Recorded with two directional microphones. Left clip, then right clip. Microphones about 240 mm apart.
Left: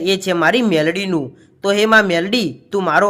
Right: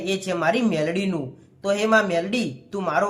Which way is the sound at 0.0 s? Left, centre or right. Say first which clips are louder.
Left 8 dB; left.